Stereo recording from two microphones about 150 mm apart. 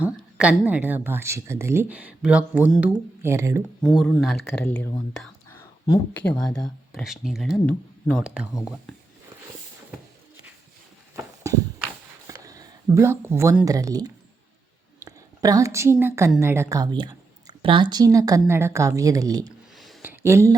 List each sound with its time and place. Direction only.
0.0 s speech: 10° right (ahead or behind)
3.8 s speech: centre (ahead or behind)
7.7 s speech: 10° left (ahead or behind)
8.2 s speech: 5° right (ahead or behind)
11.4 s horse: 20° right (ahead or behind)
12.3 s a sound: 20° right (ahead or behind)
13.7 s a woman's voice: 25° right (ahead or behind)
19.7 s a sound: centre (ahead or behind)
20.0 s a sound: 15° right (ahead or behind)